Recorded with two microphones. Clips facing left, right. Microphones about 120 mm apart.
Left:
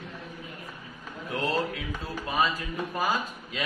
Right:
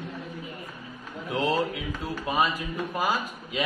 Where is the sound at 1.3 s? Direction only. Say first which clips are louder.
Right 3 dB; 20° right (ahead or behind).